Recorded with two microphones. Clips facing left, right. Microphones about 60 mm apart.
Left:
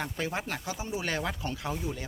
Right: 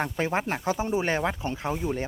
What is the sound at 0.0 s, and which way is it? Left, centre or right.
Speech, right.